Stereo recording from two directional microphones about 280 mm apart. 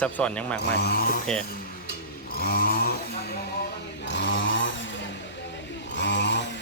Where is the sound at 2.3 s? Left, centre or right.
Left.